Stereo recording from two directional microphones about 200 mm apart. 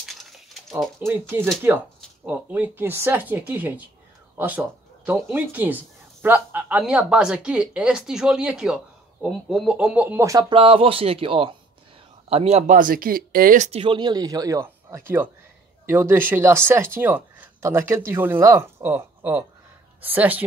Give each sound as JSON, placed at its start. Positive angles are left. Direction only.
{"t": 0.0, "sound": "a sound", "side_deg": 0}
{"t": 1.0, "sound": "speech", "side_deg": -10}
{"t": 10.6, "sound": "speech", "side_deg": -25}